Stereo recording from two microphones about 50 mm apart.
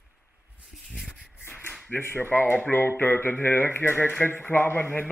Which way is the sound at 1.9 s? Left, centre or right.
Left.